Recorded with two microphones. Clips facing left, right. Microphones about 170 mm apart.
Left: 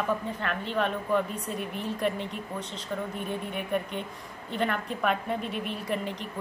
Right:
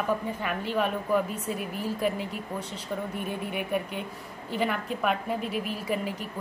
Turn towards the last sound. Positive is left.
turn(degrees=-5)  # may be behind; listen again after turning